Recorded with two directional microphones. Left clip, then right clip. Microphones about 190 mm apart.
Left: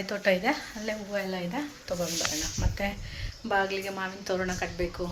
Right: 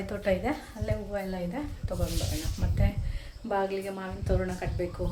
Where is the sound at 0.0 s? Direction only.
Centre (ahead or behind).